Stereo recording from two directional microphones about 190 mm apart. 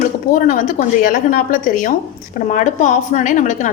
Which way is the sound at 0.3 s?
45° left (ahead or behind).